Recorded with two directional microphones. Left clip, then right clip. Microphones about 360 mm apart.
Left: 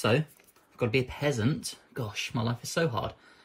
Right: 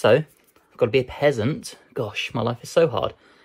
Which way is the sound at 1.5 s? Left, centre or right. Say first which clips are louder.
Right 8 dB; centre.